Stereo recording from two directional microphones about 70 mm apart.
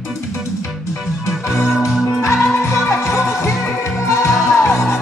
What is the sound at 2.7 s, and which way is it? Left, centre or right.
Music, centre.